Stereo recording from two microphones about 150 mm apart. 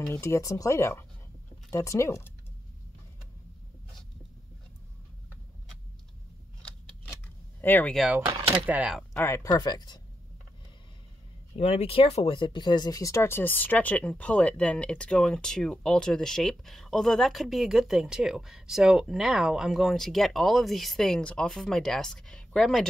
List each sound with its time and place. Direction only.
0.1 s speech: 20° left (ahead or behind)
7.6 s speech: 10° left (ahead or behind)
8.3 s speech: 30° right (ahead or behind)
8.6 s speech: 10° right (ahead or behind)
9.1 s speech: 15° left (ahead or behind)
11.5 s speech: 45° left (ahead or behind); by 22.8 s centre (ahead or behind)